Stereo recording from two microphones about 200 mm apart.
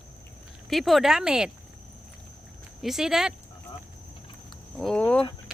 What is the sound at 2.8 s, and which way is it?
Speech, centre (ahead or behind).